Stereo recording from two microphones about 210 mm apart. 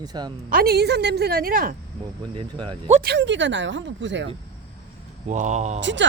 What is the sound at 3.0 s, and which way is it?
Speech, 55° right (ahead or behind).